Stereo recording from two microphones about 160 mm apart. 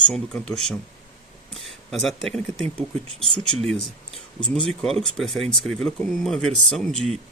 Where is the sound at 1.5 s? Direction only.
Centre (ahead or behind).